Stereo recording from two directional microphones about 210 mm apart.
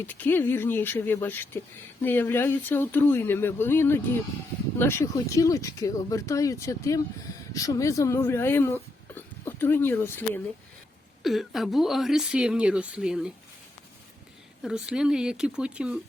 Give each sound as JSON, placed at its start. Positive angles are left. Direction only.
{"t": 0.1, "sound": "speech", "side_deg": 10}
{"t": 11.2, "sound": "a woman's voice", "side_deg": 0}
{"t": 14.6, "sound": "a woman's voice", "side_deg": -5}